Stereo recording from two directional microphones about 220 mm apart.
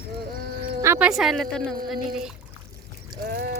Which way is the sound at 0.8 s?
10° right (ahead or behind).